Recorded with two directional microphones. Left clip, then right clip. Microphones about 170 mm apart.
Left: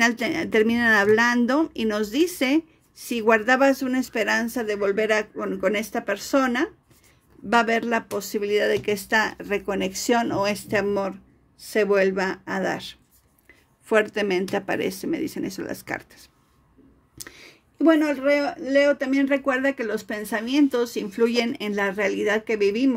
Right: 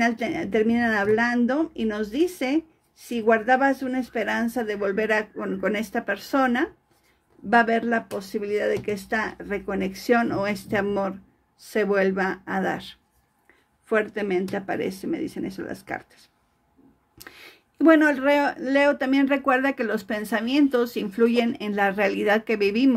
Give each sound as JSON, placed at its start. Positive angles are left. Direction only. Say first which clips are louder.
{"t": 0.0, "sound": "speech", "louder": "left 2 dB", "side_deg": 20}
{"t": 13.8, "sound": "speech", "louder": "left 3 dB", "side_deg": 20}
{"t": 17.2, "sound": "speech", "louder": "left 1 dB", "side_deg": 0}